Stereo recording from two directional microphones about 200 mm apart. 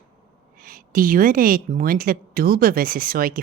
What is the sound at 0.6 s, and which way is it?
A woman's voice, 45° right (ahead or behind).